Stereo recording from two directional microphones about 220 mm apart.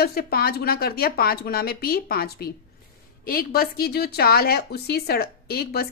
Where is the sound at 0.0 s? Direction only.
45° left (ahead or behind).